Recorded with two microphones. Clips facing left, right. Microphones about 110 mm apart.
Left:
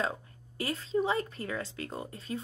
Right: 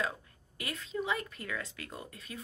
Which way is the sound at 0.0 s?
30° left (ahead or behind).